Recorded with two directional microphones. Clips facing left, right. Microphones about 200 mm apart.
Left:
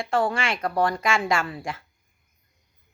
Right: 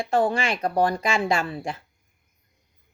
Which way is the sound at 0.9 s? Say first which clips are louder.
Right 1 dB; 30° right (ahead or behind).